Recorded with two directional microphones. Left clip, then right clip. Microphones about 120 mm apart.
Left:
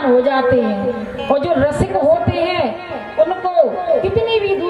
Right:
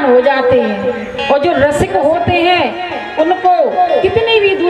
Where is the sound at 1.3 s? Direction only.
25° right (ahead or behind).